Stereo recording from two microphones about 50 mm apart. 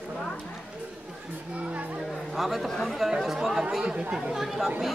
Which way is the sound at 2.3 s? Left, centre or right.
Centre.